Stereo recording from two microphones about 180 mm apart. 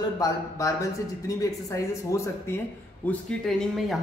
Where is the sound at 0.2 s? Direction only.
15° left (ahead or behind).